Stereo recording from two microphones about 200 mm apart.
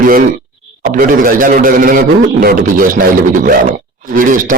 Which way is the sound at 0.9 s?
45° right (ahead or behind).